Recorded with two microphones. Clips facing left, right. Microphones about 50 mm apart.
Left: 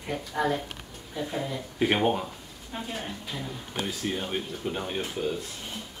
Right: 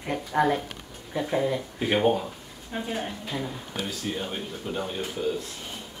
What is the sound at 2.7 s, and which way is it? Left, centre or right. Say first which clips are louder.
Speech: right 4 dB; centre.